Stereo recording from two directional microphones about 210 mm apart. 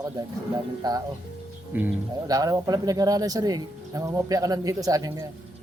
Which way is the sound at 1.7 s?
10° right (ahead or behind).